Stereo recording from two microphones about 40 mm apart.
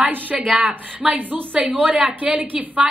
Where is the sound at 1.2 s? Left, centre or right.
Right.